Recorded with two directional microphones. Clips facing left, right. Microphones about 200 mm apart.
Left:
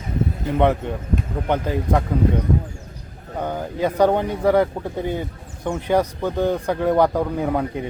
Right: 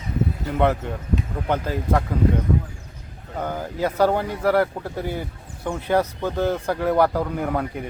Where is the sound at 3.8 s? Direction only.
15° left (ahead or behind).